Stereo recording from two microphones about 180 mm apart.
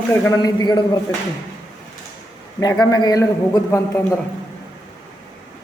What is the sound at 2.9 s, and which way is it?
A man's voice, 20° left (ahead or behind).